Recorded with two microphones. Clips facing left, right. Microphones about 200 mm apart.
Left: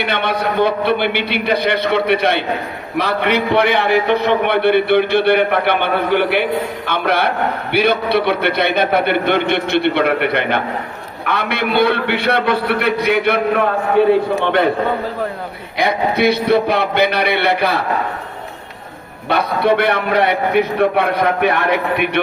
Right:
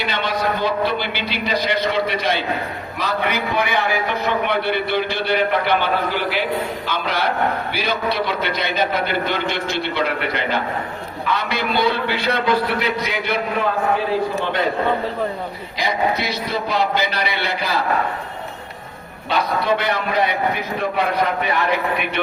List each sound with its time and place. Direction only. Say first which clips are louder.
0.0 s a man's voice: left 3 dB; 60° left (ahead or behind)
15.8 s a man's voice: left 6 dB; 60° left (ahead or behind)
19.3 s a man's voice: left 4 dB; 60° left (ahead or behind)